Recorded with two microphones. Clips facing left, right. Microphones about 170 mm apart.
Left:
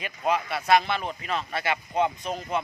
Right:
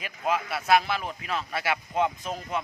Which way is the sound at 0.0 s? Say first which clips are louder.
Left 2 dB; centre (ahead or behind).